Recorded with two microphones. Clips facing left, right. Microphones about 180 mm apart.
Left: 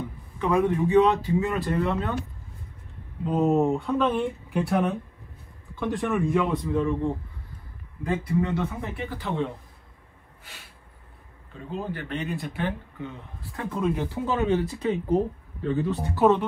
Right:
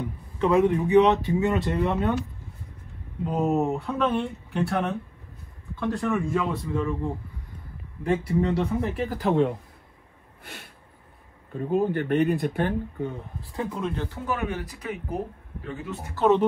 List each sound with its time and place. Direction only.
0.4 s speech: 25° right (ahead or behind)
3.3 s speech: 5° right (ahead or behind)
8.3 s a man's voice: 30° right (ahead or behind)
10.4 s a sound: 60° right (ahead or behind)
11.5 s speech: 50° right (ahead or behind)
13.7 s speech: centre (ahead or behind)
13.9 s speech: 15° left (ahead or behind)
14.3 s speech: 30° left (ahead or behind)